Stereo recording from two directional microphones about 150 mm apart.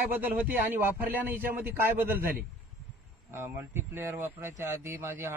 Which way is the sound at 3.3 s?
15° right (ahead or behind).